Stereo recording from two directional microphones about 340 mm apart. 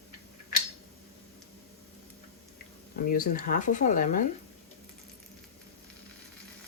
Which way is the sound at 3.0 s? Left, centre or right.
Left.